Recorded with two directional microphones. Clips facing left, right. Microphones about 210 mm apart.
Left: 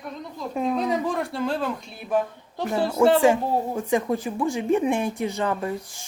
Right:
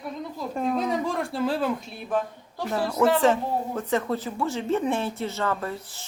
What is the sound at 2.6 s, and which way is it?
Speech, 25° left (ahead or behind).